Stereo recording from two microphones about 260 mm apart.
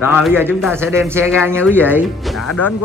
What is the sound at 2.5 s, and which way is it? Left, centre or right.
Speech, left.